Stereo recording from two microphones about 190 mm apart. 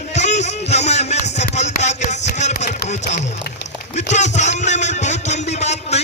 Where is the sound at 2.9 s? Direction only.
40° left (ahead or behind).